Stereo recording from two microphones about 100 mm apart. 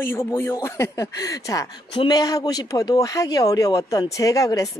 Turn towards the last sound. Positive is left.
turn(degrees=35)  # may be behind; listen again after turning